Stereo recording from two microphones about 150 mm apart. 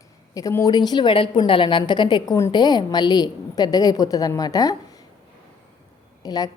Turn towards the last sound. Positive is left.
turn(degrees=25)  # may be behind; listen again after turning